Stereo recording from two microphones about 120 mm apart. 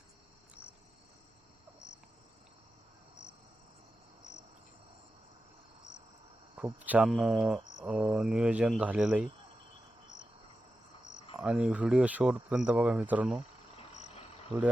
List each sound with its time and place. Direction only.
6.7 s speech: 15° right (ahead or behind)
11.3 s speech: 5° right (ahead or behind)
13.7 s cricket: 65° left (ahead or behind)